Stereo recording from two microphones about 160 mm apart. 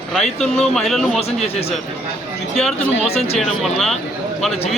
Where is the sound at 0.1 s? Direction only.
Centre (ahead or behind).